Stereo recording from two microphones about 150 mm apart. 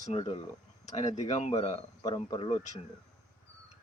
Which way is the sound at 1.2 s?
50° left (ahead or behind).